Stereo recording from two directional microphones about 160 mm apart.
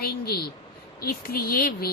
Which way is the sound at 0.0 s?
75° left (ahead or behind).